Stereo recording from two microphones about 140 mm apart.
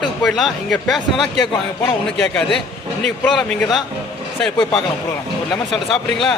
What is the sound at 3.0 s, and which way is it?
Speech, 5° left (ahead or behind).